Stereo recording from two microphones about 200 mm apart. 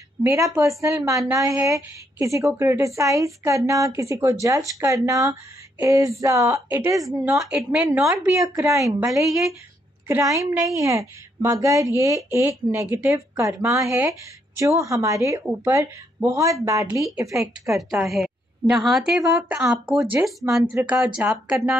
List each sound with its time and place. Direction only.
0.2 s speech: 15° right (ahead or behind)
7.4 s a woman's voice: 5° right (ahead or behind)
8.1 s speech: 15° right (ahead or behind)
9.3 s a woman's voice: centre (ahead or behind)
10.0 s speech: 15° right (ahead or behind)
18.0 s a woman's voice: centre (ahead or behind)